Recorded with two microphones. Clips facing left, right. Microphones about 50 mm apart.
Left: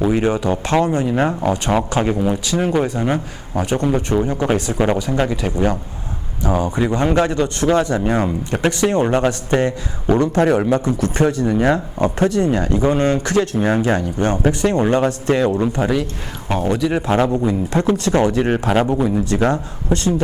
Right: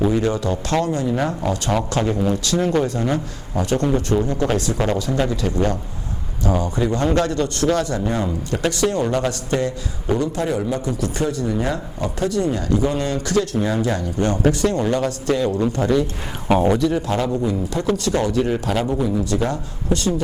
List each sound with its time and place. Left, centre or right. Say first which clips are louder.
0.1 s speech: left 3 dB; left
1.0 s speech: left 3 dB; left
1.3 s speech: left 3 dB; left
8.1 s speech: left 4 dB; left
10.4 s speech: left 6 dB; left
11.5 s speech: left 7 dB; left
11.9 s speech: left 5 dB; left
16.5 s speech: right 3 dB; centre
17.1 s speech: left 4 dB; left